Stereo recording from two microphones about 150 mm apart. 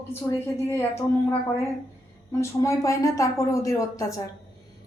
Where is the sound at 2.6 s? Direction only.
20° left (ahead or behind).